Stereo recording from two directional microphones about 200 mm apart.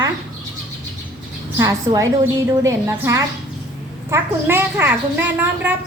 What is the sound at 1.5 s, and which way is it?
A woman's voice, 15° right (ahead or behind).